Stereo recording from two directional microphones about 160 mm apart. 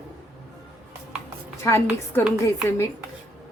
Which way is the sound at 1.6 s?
15° left (ahead or behind).